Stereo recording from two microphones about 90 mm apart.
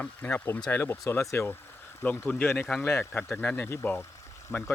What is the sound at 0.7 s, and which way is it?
Speech, 25° left (ahead or behind).